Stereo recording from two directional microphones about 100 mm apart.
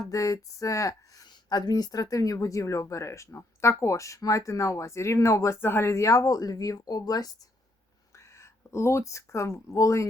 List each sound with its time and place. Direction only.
0.1 s speech: 35° left (ahead or behind)
8.1 s speech: 30° left (ahead or behind)